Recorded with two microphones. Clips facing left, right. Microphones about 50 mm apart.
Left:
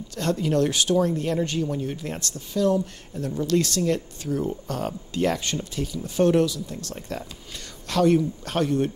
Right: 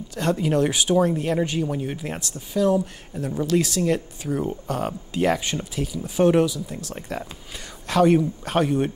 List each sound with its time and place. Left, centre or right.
0.1 s speech: centre